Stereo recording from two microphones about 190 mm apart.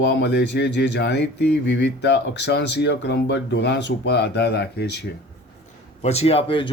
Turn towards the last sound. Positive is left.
turn(degrees=30)  # may be behind; listen again after turning